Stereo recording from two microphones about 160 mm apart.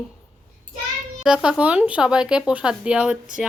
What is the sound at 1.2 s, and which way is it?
A woman's voice, 5° right (ahead or behind).